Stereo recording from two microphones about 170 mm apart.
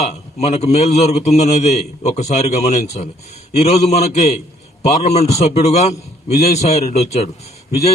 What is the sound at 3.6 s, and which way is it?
Speech, 40° left (ahead or behind).